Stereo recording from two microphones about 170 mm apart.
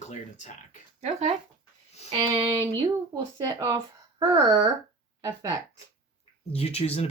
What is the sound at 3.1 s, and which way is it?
Speech, 25° right (ahead or behind).